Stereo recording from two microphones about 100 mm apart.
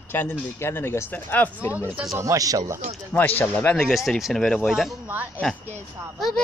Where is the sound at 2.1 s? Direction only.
30° right (ahead or behind).